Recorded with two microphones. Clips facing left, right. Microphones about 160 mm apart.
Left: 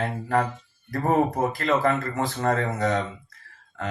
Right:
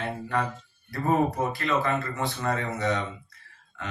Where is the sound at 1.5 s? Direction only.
40° left (ahead or behind).